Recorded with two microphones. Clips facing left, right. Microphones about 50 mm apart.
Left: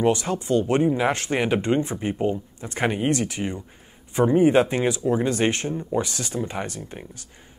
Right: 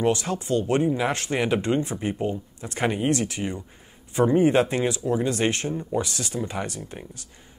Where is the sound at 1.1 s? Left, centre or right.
Left.